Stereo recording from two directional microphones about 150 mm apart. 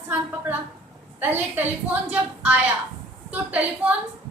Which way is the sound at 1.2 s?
15° right (ahead or behind).